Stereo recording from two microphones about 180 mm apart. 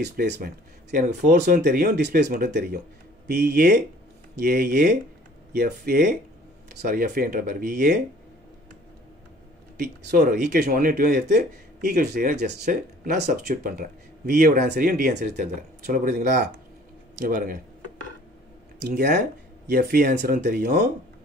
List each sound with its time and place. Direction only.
0.0 s speech: 65° right (ahead or behind)
10.1 s speech: 55° right (ahead or behind)
18.8 s speech: 65° right (ahead or behind)